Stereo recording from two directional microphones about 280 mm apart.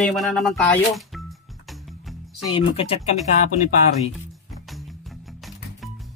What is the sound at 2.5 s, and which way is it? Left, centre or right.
Speech, centre.